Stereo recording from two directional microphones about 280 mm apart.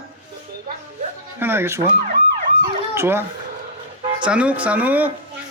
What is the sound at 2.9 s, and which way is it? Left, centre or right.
Speech, centre.